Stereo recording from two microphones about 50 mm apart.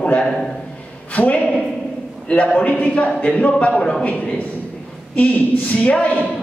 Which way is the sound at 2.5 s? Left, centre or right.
Left.